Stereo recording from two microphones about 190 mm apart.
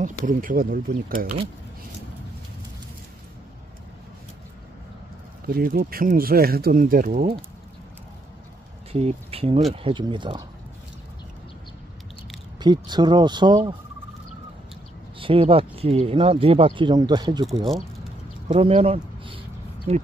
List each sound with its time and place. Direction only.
0.0 s speech: 45° right (ahead or behind)
5.5 s speech: 50° right (ahead or behind)
8.9 s speech: 30° right (ahead or behind)
12.5 s speech: 25° right (ahead or behind)
15.1 s speech: 30° right (ahead or behind)
17.5 s speech: centre (ahead or behind)
18.5 s speech: 30° right (ahead or behind)